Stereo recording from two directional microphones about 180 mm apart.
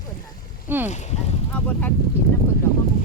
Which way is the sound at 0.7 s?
10° right (ahead or behind).